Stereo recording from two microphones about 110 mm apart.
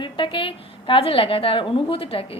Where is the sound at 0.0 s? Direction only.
50° left (ahead or behind).